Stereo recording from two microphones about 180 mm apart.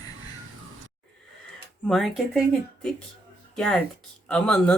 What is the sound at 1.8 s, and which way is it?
Speech, centre (ahead or behind).